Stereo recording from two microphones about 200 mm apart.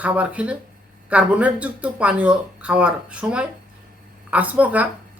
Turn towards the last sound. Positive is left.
turn(degrees=-5)  # may be behind; listen again after turning